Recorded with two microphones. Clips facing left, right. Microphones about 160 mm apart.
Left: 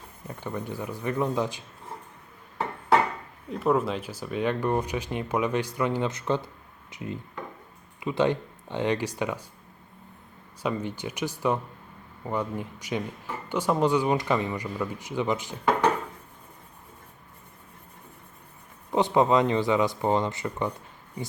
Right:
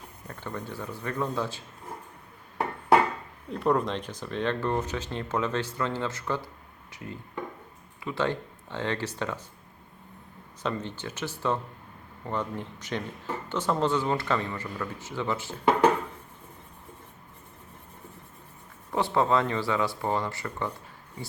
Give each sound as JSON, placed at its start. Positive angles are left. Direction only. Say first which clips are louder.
{"t": 0.3, "sound": "speech", "louder": "left 3 dB", "side_deg": 15}
{"t": 3.5, "sound": "speech", "louder": "left 1 dB", "side_deg": 5}
{"t": 10.6, "sound": "speech", "louder": "left 3 dB", "side_deg": 10}
{"t": 18.9, "sound": "speech", "louder": "left 3 dB", "side_deg": 20}